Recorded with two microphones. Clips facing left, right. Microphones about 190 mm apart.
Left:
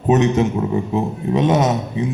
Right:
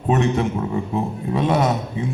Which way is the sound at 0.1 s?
20° left (ahead or behind).